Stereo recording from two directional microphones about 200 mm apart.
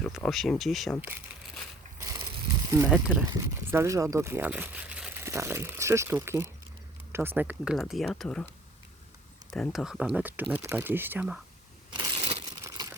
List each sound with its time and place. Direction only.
0.0 s speech: centre (ahead or behind)
2.6 s speech: 15° right (ahead or behind)
2.9 s speech: centre (ahead or behind)
3.2 s speech: 15° right (ahead or behind); by 8.4 s 5° left (ahead or behind)
9.5 s speech: centre (ahead or behind)
11.9 s crushing: 30° right (ahead or behind)
12.6 s a sound: 15° right (ahead or behind)